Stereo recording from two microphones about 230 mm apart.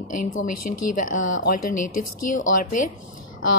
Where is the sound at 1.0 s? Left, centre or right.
Left.